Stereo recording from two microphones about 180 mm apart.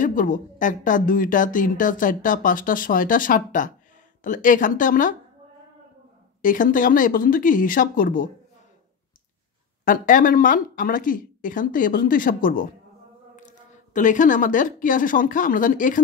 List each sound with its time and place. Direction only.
0.0 s a woman's voice: 50° left (ahead or behind)
6.4 s a woman's voice: 50° left (ahead or behind)
9.8 s a woman's voice: 50° left (ahead or behind)